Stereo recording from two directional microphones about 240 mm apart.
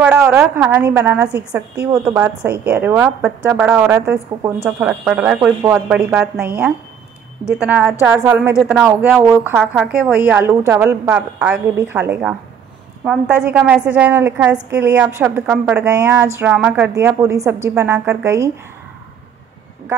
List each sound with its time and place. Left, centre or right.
0.0 s a woman's voice: centre